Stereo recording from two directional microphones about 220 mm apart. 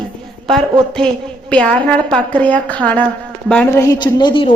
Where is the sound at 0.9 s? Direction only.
5° left (ahead or behind); by 4.4 s 20° left (ahead or behind).